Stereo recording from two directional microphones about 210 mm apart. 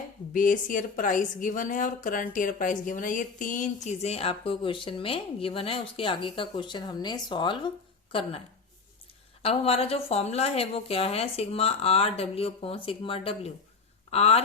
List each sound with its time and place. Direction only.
0.3 s a woman's voice: 40° left (ahead or behind); by 7.7 s 20° left (ahead or behind)
9.4 s speech: 30° left (ahead or behind)